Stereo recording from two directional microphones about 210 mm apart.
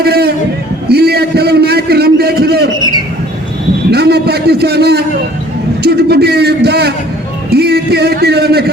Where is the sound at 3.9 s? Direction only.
50° right (ahead or behind).